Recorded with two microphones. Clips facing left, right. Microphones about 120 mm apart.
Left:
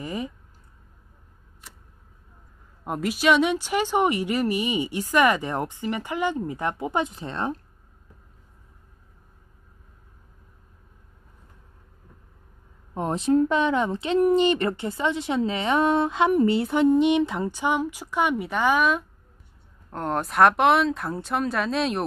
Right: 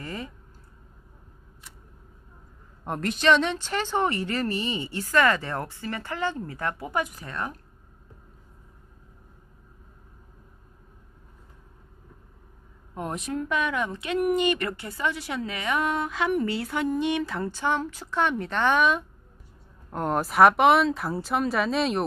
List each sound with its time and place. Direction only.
0.0 s a woman's voice: 15° left (ahead or behind)
2.8 s a woman's voice: 5° left (ahead or behind); by 7.6 s 25° left (ahead or behind)
12.9 s speech: 30° left (ahead or behind); by 22.0 s centre (ahead or behind)